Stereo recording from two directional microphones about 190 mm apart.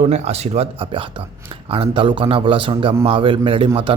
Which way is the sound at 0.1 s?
35° right (ahead or behind).